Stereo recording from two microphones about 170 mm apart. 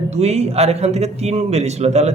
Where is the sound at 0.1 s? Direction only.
40° right (ahead or behind).